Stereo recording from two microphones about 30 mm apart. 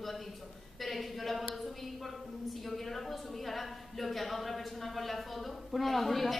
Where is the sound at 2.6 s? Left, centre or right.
Centre.